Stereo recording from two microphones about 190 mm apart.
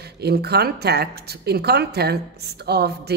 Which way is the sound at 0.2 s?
55° right (ahead or behind).